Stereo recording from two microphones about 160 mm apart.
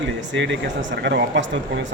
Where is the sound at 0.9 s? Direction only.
90° right.